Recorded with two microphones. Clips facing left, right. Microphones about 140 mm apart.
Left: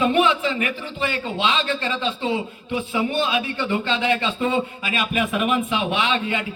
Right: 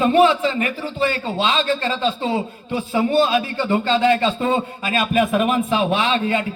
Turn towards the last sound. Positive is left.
turn(degrees=-40)  # may be behind; listen again after turning